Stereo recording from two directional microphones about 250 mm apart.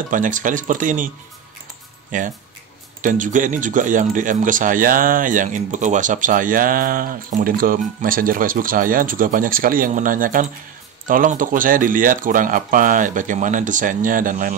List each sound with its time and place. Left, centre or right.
0.1 s a man's voice: right